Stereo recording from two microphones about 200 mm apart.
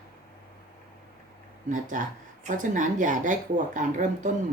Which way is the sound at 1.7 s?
40° right (ahead or behind).